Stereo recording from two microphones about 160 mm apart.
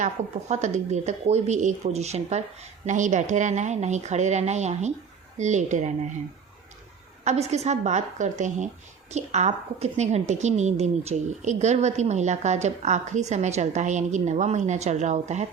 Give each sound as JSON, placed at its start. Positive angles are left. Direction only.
{"t": 0.0, "sound": "a woman's voice", "side_deg": -45}
{"t": 7.3, "sound": "a woman's voice", "side_deg": -45}